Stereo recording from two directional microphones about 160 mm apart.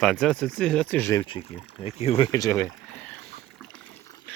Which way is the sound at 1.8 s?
40° left (ahead or behind).